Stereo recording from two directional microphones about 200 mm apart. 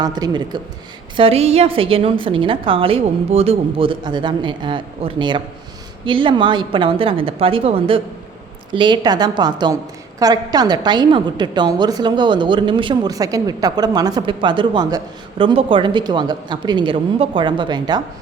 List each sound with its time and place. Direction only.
0.0 s a woman's voice: 20° right (ahead or behind)